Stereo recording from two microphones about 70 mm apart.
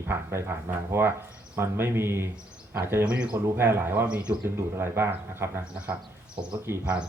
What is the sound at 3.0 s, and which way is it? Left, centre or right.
Speech, centre.